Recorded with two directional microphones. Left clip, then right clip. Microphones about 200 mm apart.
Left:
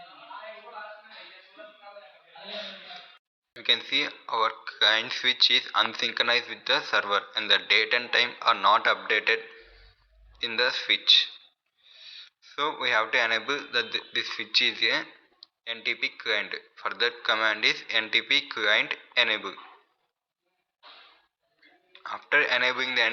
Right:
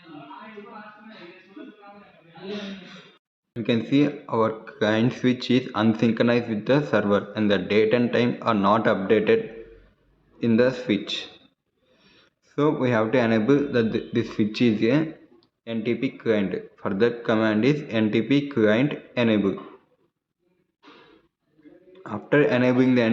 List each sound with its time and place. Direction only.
3.5 s speech: 10° left (ahead or behind)
21.9 s speech: 15° left (ahead or behind)